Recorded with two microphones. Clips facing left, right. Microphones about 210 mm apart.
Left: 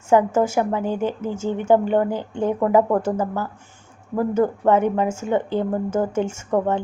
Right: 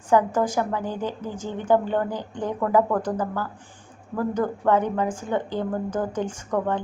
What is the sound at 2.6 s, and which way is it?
Speech, 25° left (ahead or behind).